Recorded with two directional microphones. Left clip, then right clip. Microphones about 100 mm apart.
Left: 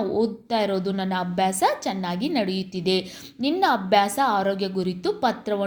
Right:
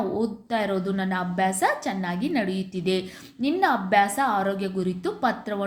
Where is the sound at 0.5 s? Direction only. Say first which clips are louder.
Left 1 dB; 20° left (ahead or behind).